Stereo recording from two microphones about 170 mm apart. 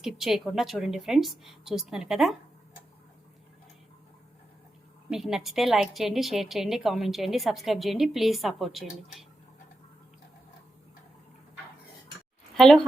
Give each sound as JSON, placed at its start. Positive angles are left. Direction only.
{"t": 0.0, "sound": "a woman's voice", "side_deg": 0}
{"t": 5.1, "sound": "a woman's voice", "side_deg": 0}
{"t": 12.5, "sound": "speech", "side_deg": 0}